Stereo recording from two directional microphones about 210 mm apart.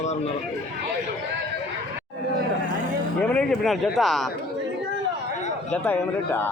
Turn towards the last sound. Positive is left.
turn(degrees=10)  # may be behind; listen again after turning